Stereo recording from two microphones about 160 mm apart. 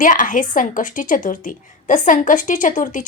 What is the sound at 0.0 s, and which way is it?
A woman's voice, 55° left (ahead or behind).